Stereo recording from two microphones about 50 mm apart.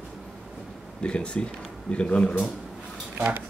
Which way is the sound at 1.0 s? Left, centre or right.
Left.